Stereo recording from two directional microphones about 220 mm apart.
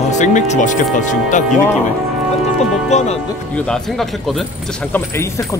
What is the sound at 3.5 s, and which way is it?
Speech, centre (ahead or behind).